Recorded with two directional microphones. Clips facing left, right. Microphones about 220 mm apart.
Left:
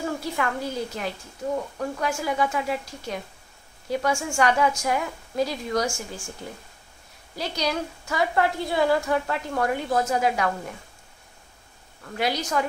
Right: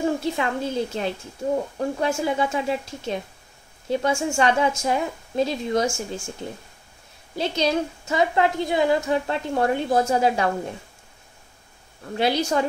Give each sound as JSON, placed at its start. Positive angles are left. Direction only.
{"t": 0.0, "sound": "a woman's voice", "side_deg": -25}
{"t": 7.3, "sound": "a woman's voice", "side_deg": -25}
{"t": 12.0, "sound": "a woman's voice", "side_deg": -30}